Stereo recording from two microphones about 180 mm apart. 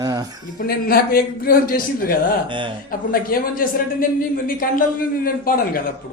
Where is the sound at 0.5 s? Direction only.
55° left (ahead or behind).